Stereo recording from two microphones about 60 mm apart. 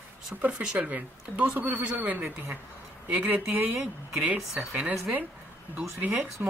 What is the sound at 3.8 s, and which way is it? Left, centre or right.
Speech, centre.